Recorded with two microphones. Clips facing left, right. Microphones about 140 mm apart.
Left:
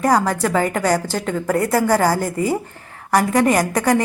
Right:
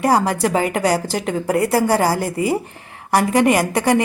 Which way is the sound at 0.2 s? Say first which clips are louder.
Even; 15° right (ahead or behind).